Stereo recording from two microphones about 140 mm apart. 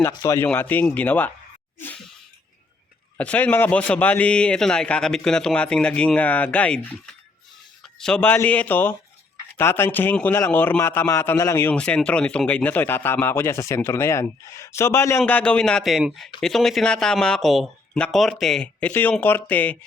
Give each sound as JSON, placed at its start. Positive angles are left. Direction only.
{"t": 0.0, "sound": "a man's voice", "side_deg": 20}
{"t": 3.2, "sound": "a man's voice", "side_deg": 10}
{"t": 15.2, "sound": "speech", "side_deg": 10}